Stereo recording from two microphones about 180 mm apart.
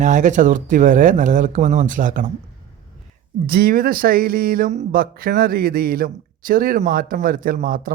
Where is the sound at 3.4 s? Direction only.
55° right (ahead or behind).